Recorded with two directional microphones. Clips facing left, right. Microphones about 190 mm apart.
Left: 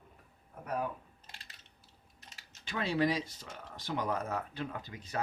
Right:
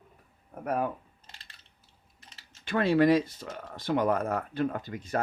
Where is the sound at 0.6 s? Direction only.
55° right (ahead or behind).